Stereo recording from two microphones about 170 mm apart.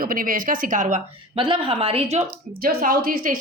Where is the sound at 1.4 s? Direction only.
30° right (ahead or behind).